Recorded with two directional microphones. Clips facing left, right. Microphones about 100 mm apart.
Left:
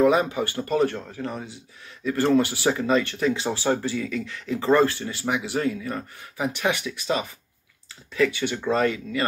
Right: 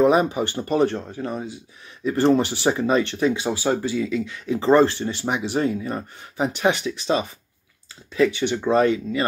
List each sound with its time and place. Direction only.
0.0 s speech: 25° right (ahead or behind)